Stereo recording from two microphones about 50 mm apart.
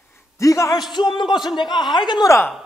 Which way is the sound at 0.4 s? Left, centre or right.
Left.